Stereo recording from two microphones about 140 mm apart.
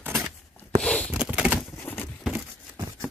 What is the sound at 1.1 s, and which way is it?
Typewriter, 10° right (ahead or behind).